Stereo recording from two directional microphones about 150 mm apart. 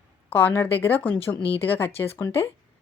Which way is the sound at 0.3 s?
10° left (ahead or behind).